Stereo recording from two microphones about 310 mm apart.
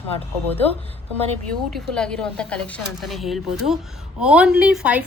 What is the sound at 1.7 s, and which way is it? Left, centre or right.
A woman's voice, centre.